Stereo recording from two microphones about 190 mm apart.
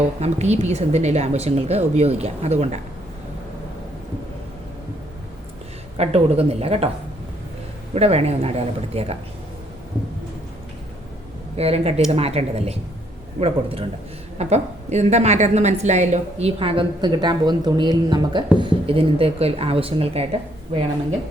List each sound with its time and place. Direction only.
0.2 s a woman's voice: 35° right (ahead or behind)
6.0 s a woman's voice: 35° right (ahead or behind)
7.9 s a woman's voice: 35° right (ahead or behind)
11.5 s a woman's voice: 30° right (ahead or behind)